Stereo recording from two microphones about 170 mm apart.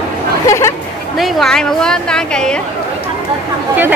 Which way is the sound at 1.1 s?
Centre (ahead or behind).